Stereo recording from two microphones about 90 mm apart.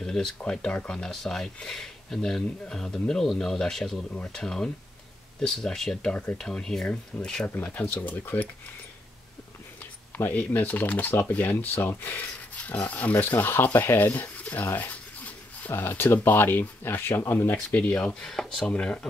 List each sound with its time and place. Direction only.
0.0 s speech: 5° left (ahead or behind)
10.1 s speech: 20° left (ahead or behind)
18.2 s speech: 5° left (ahead or behind)